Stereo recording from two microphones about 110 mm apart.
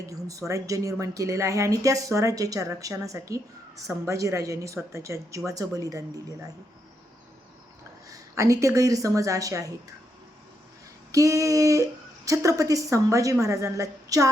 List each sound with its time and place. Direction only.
0.0 s speech: 30° right (ahead or behind)
8.1 s speech: 30° right (ahead or behind)
11.1 s speech: 30° right (ahead or behind)